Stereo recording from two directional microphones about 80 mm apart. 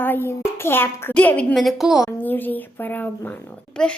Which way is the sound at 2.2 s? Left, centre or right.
Left.